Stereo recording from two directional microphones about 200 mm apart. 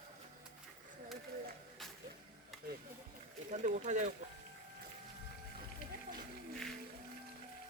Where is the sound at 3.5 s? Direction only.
35° right (ahead or behind).